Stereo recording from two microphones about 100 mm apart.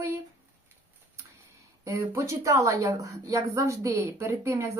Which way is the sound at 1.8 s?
30° right (ahead or behind).